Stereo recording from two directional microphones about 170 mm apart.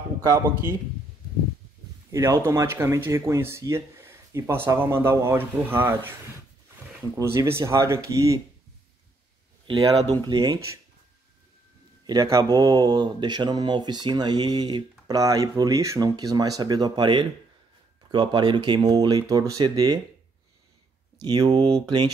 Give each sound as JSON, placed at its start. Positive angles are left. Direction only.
{"t": 0.2, "sound": "speech", "side_deg": -15}
{"t": 2.1, "sound": "speech", "side_deg": -15}
{"t": 7.2, "sound": "speech", "side_deg": -15}
{"t": 9.7, "sound": "speech", "side_deg": -25}
{"t": 12.1, "sound": "speech", "side_deg": -20}
{"t": 21.2, "sound": "speech", "side_deg": -25}